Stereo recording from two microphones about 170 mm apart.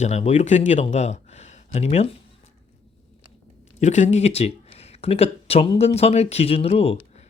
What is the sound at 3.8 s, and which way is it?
Speech, 45° left (ahead or behind).